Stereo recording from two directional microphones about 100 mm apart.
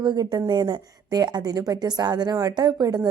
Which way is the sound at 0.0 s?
45° right (ahead or behind).